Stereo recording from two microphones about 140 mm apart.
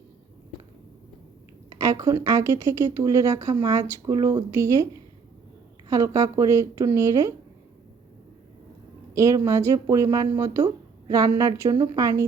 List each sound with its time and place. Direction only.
1.7 s speech: 25° right (ahead or behind)
9.1 s speech: 20° right (ahead or behind)